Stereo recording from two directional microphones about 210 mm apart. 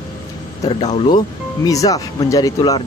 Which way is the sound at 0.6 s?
25° left (ahead or behind).